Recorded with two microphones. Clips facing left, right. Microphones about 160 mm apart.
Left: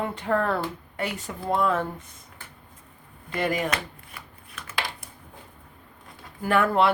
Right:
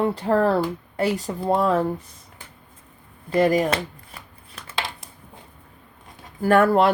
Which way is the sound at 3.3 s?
35° right (ahead or behind).